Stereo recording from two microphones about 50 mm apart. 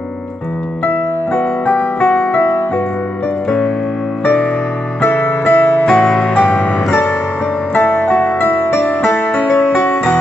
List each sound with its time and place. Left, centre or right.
1.7 s music: left
3.4 s music: centre
5.1 s music: left
5.9 s music: centre
7.8 s music: centre
8.2 s music: left